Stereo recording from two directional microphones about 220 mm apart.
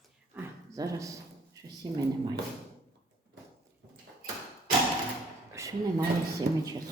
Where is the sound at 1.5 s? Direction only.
15° right (ahead or behind).